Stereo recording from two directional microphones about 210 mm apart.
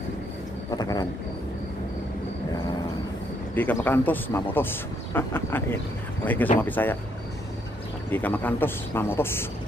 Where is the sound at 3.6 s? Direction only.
10° left (ahead or behind).